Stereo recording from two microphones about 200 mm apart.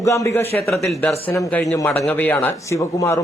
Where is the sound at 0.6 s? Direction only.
Centre (ahead or behind); by 3.2 s 15° left (ahead or behind).